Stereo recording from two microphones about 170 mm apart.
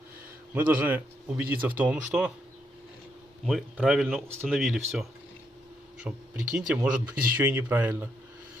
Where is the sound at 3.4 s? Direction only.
Centre (ahead or behind).